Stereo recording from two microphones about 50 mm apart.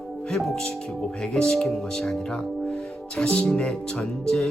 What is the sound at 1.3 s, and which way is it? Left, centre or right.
Speech, centre.